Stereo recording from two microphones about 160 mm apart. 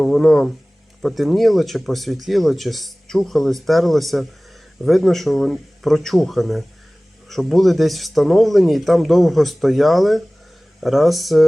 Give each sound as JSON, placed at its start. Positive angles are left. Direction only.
{"t": 0.0, "sound": "speech", "side_deg": 0}